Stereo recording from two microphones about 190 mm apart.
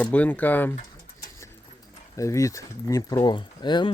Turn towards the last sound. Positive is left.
turn(degrees=25)  # may be behind; listen again after turning